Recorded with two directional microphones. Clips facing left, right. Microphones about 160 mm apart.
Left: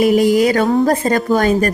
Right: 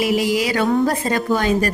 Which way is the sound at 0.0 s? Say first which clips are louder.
Left 7 dB; 45° left (ahead or behind).